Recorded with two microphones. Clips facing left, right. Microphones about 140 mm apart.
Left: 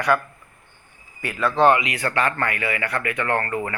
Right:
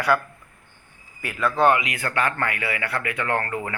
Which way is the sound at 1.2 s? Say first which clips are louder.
Left 2 dB; 5° right (ahead or behind).